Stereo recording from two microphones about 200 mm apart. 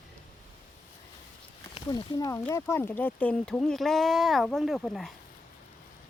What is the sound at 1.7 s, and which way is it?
Speech, 20° left (ahead or behind).